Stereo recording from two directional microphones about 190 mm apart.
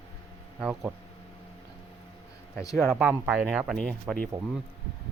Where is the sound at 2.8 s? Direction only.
Centre (ahead or behind).